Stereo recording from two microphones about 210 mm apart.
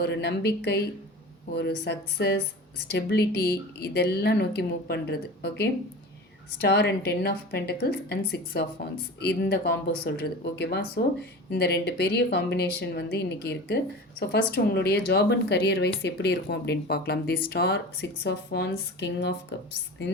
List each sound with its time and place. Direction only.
0.0 s speech: 50° left (ahead or behind)